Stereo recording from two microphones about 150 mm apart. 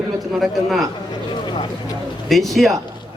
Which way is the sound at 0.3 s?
Centre (ahead or behind).